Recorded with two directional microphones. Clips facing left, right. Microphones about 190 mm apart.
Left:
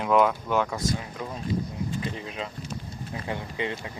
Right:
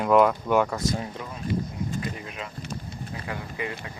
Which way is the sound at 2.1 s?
30° left (ahead or behind).